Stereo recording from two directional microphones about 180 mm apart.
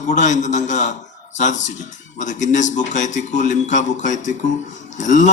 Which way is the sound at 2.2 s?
40° left (ahead or behind).